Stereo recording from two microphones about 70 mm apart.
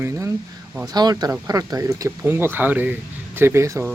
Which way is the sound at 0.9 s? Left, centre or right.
Right.